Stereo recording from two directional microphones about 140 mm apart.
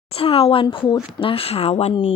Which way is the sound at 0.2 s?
40° left (ahead or behind).